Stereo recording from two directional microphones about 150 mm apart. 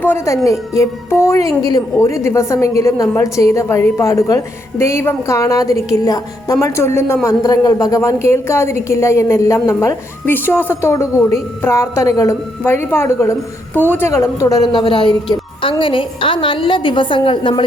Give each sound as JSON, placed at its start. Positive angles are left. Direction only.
{"t": 0.0, "sound": "a woman's voice", "side_deg": 15}